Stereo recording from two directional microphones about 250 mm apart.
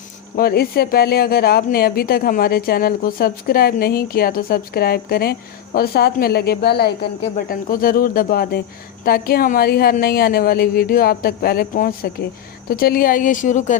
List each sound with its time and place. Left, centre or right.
0.3 s speech: left